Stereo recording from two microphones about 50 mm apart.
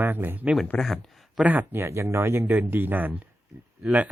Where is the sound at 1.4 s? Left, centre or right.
Right.